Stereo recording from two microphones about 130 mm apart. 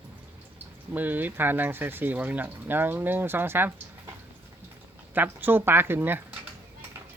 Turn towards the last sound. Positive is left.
turn(degrees=-15)  # may be behind; listen again after turning